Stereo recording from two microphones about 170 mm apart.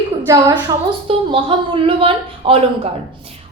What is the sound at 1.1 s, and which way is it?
A woman's voice, 35° right (ahead or behind).